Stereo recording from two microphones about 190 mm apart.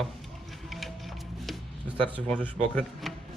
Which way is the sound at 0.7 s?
Centre (ahead or behind).